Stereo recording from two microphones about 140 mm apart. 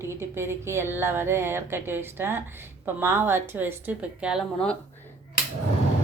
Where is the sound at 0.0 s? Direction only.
20° right (ahead or behind).